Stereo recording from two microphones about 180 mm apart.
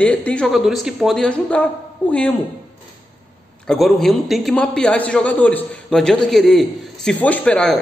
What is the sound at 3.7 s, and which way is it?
A man's voice, centre (ahead or behind).